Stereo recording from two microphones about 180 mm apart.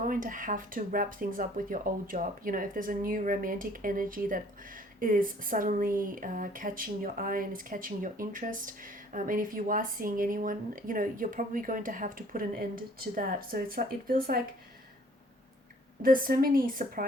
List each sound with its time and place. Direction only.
0.1 s speech: 50° right (ahead or behind)
16.0 s speech: 50° right (ahead or behind)